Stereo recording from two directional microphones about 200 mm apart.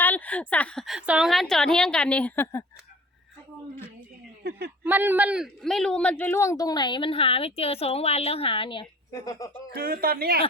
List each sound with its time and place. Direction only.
0.0 s speech: 10° left (ahead or behind)
4.8 s speech: 10° right (ahead or behind); by 9.5 s 15° left (ahead or behind)
9.7 s speech: 50° right (ahead or behind)